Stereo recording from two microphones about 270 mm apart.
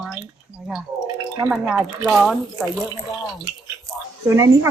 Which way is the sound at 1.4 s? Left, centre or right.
Centre.